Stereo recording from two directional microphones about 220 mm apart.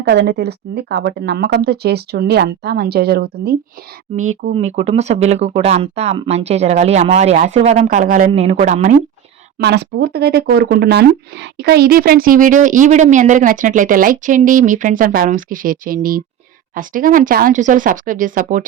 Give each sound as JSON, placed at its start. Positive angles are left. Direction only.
{"t": 0.0, "sound": "speech", "side_deg": -50}
{"t": 4.4, "sound": "speech", "side_deg": -30}
{"t": 8.3, "sound": "speech", "side_deg": -30}
{"t": 9.6, "sound": "speech", "side_deg": -50}